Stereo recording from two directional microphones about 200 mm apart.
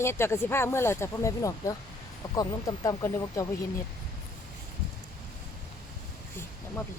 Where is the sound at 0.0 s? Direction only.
15° left (ahead or behind).